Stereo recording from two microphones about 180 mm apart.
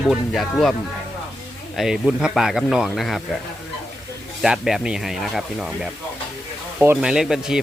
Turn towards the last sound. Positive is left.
turn(degrees=-5)  # may be behind; listen again after turning